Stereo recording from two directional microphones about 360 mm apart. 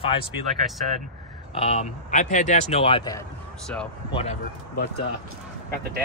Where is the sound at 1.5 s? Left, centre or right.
Centre.